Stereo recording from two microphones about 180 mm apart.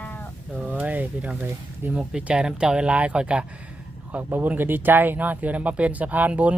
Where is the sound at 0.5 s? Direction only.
10° right (ahead or behind).